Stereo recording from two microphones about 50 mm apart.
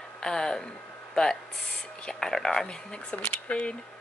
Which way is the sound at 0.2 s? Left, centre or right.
Centre.